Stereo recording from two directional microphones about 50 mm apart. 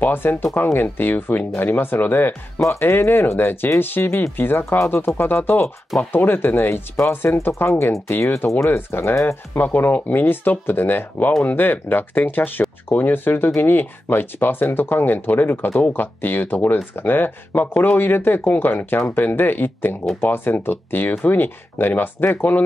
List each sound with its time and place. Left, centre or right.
0.0 s speech: left
2.8 s speech: left
8.6 s speech: left
9.1 s speech: left
9.9 s speech: left